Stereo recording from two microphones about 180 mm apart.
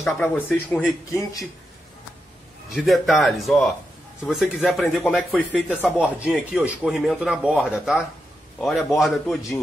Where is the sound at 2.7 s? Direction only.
Centre (ahead or behind).